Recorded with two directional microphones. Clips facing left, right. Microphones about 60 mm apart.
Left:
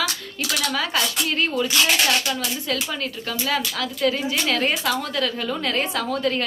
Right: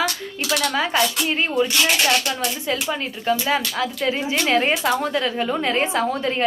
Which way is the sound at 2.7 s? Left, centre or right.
Right.